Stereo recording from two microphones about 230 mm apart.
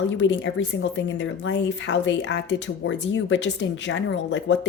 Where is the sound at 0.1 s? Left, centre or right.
Left.